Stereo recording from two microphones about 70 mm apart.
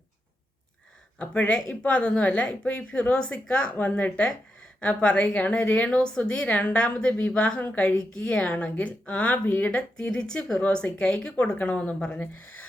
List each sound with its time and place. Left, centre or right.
1.2 s a woman's voice: centre